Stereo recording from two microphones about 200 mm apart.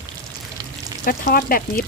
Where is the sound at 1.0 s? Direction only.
45° left (ahead or behind).